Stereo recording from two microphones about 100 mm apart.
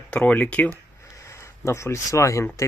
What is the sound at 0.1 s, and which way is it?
Speech, 10° left (ahead or behind).